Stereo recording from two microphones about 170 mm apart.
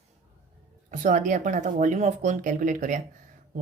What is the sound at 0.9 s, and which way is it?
Speech, 45° right (ahead or behind).